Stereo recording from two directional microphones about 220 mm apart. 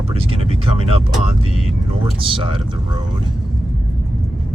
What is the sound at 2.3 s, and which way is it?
Speech, 25° right (ahead or behind).